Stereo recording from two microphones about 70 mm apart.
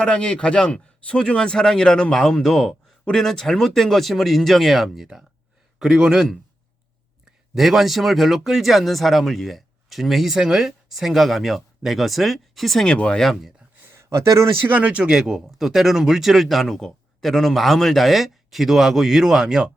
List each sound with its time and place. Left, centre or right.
0.0 s speech: centre
7.5 s speech: centre
12.9 s speech: centre
13.9 s a sound: right
14.7 s speech: centre